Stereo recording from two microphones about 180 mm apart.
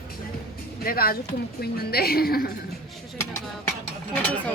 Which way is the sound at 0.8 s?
55° left (ahead or behind).